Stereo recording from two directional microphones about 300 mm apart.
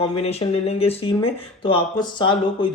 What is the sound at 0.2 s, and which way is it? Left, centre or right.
Speech, centre.